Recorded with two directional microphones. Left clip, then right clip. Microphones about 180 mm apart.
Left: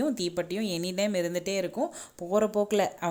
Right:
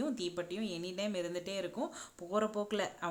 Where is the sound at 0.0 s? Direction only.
30° left (ahead or behind).